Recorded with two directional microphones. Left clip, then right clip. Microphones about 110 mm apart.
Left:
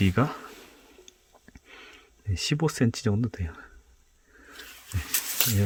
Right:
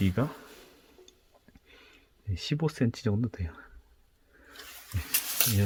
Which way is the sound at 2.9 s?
35° left (ahead or behind).